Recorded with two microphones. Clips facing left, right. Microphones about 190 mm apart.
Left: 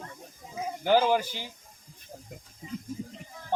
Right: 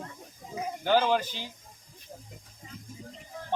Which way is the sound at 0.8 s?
10° left (ahead or behind).